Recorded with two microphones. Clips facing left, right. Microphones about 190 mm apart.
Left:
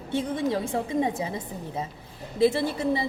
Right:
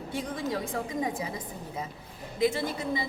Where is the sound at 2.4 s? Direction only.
30° left (ahead or behind).